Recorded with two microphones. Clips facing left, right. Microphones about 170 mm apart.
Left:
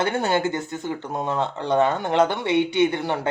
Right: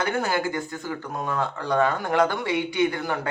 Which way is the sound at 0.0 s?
25° left (ahead or behind).